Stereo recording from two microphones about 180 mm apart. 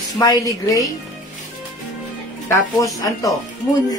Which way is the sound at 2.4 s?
20° left (ahead or behind).